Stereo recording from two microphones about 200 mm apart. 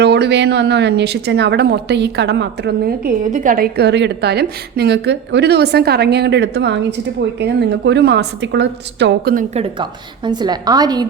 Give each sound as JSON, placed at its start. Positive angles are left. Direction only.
{"t": 0.0, "sound": "speech", "side_deg": -55}
{"t": 9.3, "sound": "a woman's voice", "side_deg": -40}
{"t": 9.7, "sound": "a woman's voice", "side_deg": -25}